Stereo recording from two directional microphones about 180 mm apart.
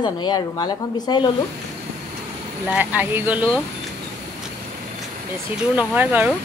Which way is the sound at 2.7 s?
10° right (ahead or behind).